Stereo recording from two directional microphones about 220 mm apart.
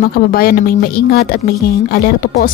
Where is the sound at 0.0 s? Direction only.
45° left (ahead or behind).